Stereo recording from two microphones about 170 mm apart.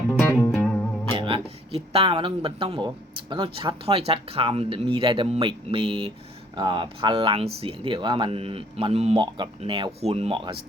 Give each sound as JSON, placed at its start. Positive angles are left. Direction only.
{"t": 0.5, "sound": "music", "side_deg": 5}
{"t": 1.1, "sound": "speech", "side_deg": -30}